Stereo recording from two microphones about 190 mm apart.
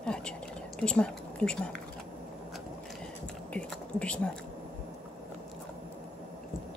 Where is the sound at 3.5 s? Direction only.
5° left (ahead or behind).